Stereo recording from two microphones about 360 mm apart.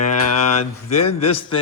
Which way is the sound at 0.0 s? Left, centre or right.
Left.